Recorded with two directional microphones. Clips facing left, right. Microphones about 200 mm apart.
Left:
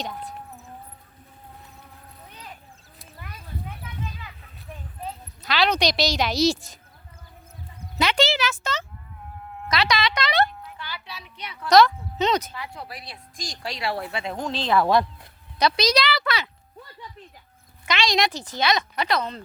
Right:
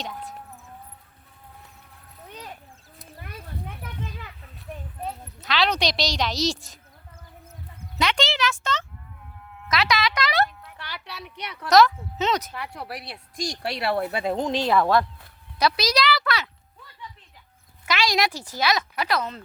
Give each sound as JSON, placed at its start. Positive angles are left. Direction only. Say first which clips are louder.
{"t": 0.0, "sound": "a sound", "louder": "left 2 dB", "side_deg": 0}
{"t": 3.2, "sound": "a sound", "louder": "even", "side_deg": -60}
{"t": 5.4, "sound": "speech", "louder": "left 2 dB", "side_deg": 0}
{"t": 7.9, "sound": "speech", "louder": "left 3 dB", "side_deg": 5}
{"t": 9.6, "sound": "music", "louder": "even", "side_deg": -5}
{"t": 10.7, "sound": "a sound", "louder": "left 1 dB", "side_deg": -70}
{"t": 11.7, "sound": "speech", "louder": "left 1 dB", "side_deg": -5}
{"t": 12.5, "sound": "speech", "louder": "right 2 dB", "side_deg": -65}
{"t": 14.3, "sound": "speech", "louder": "right 3 dB", "side_deg": -15}
{"t": 14.8, "sound": "speech", "louder": "left 1 dB", "side_deg": 15}
{"t": 15.5, "sound": "speech", "louder": "left 2 dB", "side_deg": -5}
{"t": 16.8, "sound": "a sound", "louder": "left 6 dB", "side_deg": 45}
{"t": 17.8, "sound": "speech", "louder": "left 1 dB", "side_deg": -5}